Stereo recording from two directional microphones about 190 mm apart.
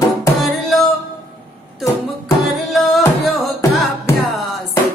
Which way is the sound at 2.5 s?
Centre (ahead or behind).